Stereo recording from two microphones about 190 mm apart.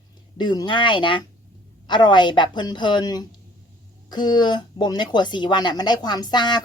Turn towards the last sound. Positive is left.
turn(degrees=25)  # may be behind; listen again after turning